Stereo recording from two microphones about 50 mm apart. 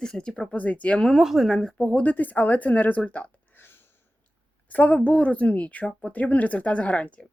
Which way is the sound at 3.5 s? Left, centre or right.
Left.